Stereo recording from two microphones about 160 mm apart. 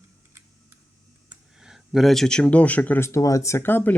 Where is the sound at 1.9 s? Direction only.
Centre (ahead or behind).